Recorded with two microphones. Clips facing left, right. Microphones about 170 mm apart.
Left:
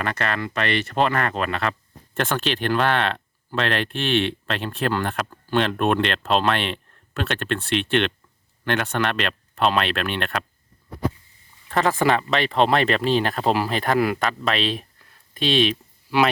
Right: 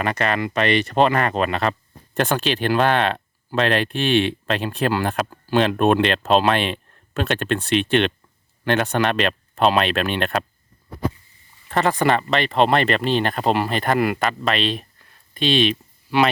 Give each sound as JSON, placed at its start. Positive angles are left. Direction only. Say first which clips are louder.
{"t": 0.0, "sound": "speech", "louder": "right 4 dB", "side_deg": -15}
{"t": 11.7, "sound": "speech", "louder": "right 1 dB", "side_deg": 0}